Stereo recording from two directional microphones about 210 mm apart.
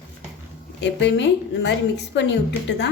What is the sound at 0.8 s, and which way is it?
A woman's voice, 55° left (ahead or behind).